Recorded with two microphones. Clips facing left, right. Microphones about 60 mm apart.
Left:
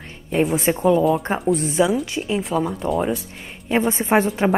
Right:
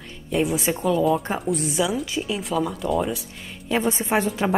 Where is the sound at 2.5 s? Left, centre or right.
Left.